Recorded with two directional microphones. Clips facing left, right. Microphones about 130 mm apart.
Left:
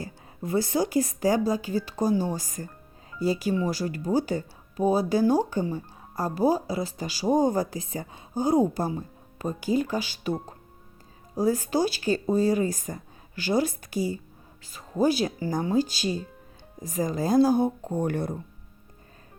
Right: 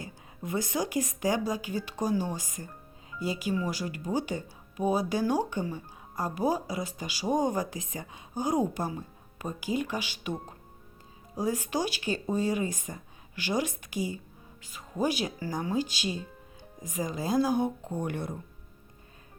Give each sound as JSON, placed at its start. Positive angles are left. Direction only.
{"t": 0.0, "sound": "speech", "side_deg": 35}
{"t": 11.3, "sound": "speech", "side_deg": 35}